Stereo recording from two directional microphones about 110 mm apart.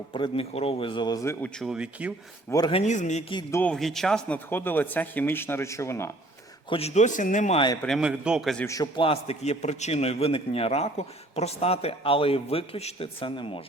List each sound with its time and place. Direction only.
0.1 s speech: 55° left (ahead or behind)
1.1 s speech: 25° left (ahead or behind)
1.6 s speech: 10° right (ahead or behind)
2.5 s speech: 25° left (ahead or behind)
2.8 s a man's voice: 90° left
3.5 s speech: 15° left (ahead or behind)
3.8 s a man's voice: centre (ahead or behind)
4.4 s speech: 20° left (ahead or behind)
6.7 s speech: 65° left (ahead or behind); by 7.6 s 90° left
7.9 s a man's voice: 10° right (ahead or behind)
8.6 s a man's voice: 30° left (ahead or behind)
9.0 s a man's voice: 60° left (ahead or behind)